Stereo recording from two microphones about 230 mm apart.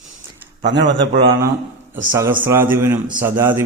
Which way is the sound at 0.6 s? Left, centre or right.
Right.